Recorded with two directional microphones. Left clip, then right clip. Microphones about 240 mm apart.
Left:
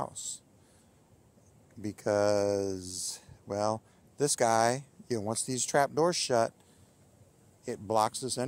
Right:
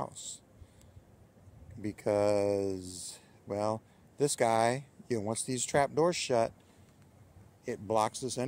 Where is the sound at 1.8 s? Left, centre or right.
Centre.